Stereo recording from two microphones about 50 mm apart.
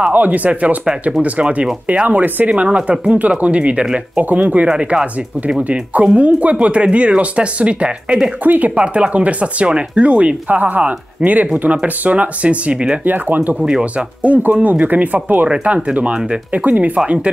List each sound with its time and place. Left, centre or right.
0.1 s speech: right
3.8 s speech: centre
4.2 s speech: right
4.6 s speech: centre
5.6 s speech: right
8.8 s speech: right
13.0 s speech: right
17.0 s speech: right